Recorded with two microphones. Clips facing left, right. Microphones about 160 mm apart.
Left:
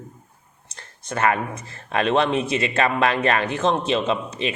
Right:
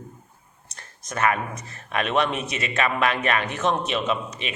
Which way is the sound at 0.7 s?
30° left (ahead or behind).